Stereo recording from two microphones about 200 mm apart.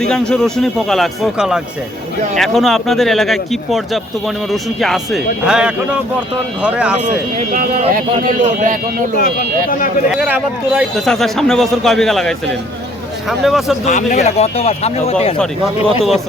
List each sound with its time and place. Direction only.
0.0 s a man's voice: 5° left (ahead or behind)
7.3 s speech: 35° right (ahead or behind)
9.1 s speech: 45° left (ahead or behind)
10.2 s a man's voice: 5° right (ahead or behind)
13.4 s a man's voice: centre (ahead or behind)
14.1 s speech: 35° left (ahead or behind)